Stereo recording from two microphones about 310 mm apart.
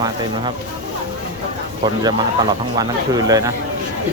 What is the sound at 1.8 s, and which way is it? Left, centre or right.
Speech, centre.